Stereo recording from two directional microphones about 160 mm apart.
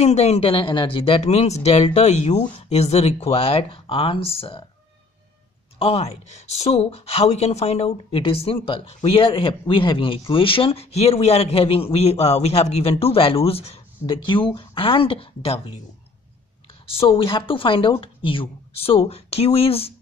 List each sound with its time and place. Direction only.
0.0 s speech: 40° left (ahead or behind)
5.8 s speech: 40° left (ahead or behind)
16.9 s speech: 35° left (ahead or behind)